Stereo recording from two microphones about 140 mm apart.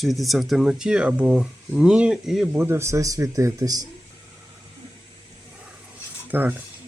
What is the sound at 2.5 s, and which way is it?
Speech, 20° right (ahead or behind).